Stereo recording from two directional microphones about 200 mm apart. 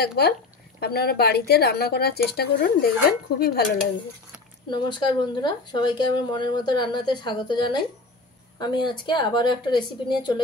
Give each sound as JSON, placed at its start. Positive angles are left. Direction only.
{"t": 0.0, "sound": "a woman's voice", "side_deg": 55}
{"t": 4.6, "sound": "speech", "side_deg": 20}